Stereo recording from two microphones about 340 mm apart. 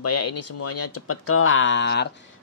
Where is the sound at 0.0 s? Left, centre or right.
Left.